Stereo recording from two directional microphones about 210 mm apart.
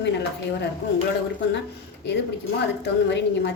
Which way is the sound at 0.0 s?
55° left (ahead or behind).